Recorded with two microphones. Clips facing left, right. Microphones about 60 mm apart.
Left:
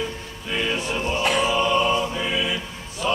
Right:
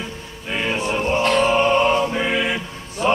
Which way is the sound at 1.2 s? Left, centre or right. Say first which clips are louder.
Right 4 dB; centre.